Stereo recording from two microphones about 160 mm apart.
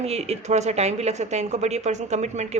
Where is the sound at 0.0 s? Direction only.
40° right (ahead or behind).